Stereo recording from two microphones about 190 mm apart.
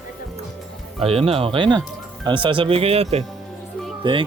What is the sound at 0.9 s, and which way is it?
Speech, 30° right (ahead or behind).